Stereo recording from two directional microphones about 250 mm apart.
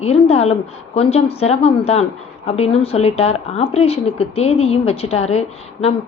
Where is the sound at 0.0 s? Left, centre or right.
Left.